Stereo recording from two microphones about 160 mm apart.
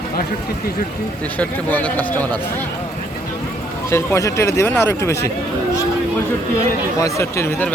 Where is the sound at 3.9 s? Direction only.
15° left (ahead or behind).